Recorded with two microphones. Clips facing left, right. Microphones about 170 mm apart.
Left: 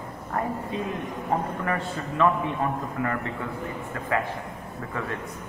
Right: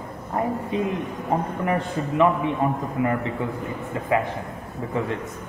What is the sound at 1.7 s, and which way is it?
A man's voice, 20° right (ahead or behind).